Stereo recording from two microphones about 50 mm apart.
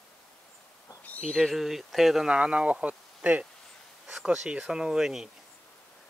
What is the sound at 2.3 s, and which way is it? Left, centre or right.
Speech, right.